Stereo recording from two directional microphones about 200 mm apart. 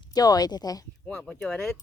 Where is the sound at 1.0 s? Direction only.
5° left (ahead or behind).